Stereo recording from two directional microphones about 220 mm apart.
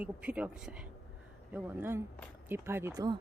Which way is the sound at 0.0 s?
5° right (ahead or behind).